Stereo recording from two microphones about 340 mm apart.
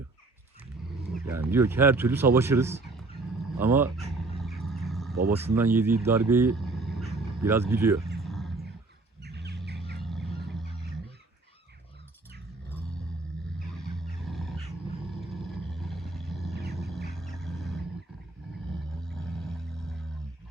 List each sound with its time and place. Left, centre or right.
1.1 s speech: centre
4.4 s a sound: centre
5.1 s speech: right
5.5 s speech: centre
8.2 s wild animals: centre
9.2 s chirp: right
13.9 s roaring cats: centre
15.3 s vehicle: centre
16.7 s music: centre
17.2 s a sound: centre